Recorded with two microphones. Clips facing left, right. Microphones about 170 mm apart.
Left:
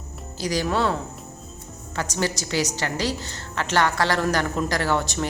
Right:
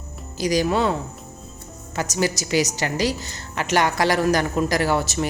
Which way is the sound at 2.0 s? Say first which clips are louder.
Right 3 dB; 10° right (ahead or behind).